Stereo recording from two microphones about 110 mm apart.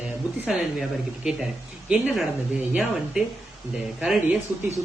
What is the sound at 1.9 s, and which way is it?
Speech, 10° right (ahead or behind).